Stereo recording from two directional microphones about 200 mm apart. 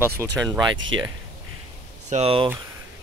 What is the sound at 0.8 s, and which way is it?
Speech, 75° right (ahead or behind).